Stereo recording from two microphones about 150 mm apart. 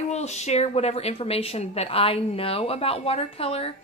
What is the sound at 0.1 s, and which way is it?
A woman's voice, 50° left (ahead or behind).